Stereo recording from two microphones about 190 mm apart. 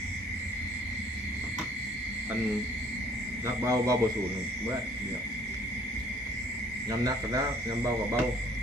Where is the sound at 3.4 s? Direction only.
15° right (ahead or behind).